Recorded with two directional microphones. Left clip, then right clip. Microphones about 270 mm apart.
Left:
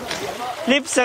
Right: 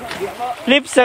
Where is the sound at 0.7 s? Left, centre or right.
Centre.